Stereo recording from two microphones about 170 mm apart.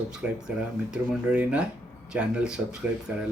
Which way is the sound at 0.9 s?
10° right (ahead or behind).